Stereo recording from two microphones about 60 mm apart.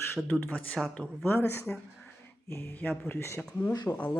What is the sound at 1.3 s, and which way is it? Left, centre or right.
Speech, left.